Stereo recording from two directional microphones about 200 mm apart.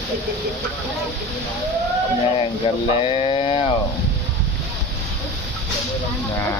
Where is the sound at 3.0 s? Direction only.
25° left (ahead or behind).